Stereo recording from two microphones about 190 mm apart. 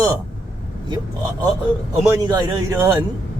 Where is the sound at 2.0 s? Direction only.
20° right (ahead or behind).